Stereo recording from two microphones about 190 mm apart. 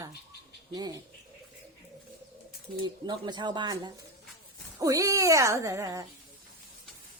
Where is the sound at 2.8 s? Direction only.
25° right (ahead or behind).